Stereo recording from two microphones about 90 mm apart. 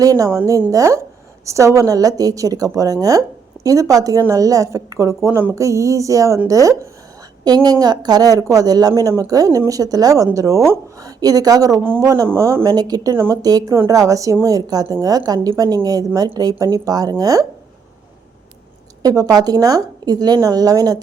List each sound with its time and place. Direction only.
0.0 s a woman's voice: 40° right (ahead or behind)
7.4 s a woman's voice: 50° right (ahead or behind)
11.8 s speech: 25° right (ahead or behind)
12.0 s a woman's voice: 40° right (ahead or behind)
12.3 s speech: 30° right (ahead or behind)
12.6 s a woman's voice: 50° right (ahead or behind); by 13.4 s 30° right (ahead or behind)
13.4 s a woman's voice: 45° right (ahead or behind)
19.0 s a woman's voice: 45° right (ahead or behind)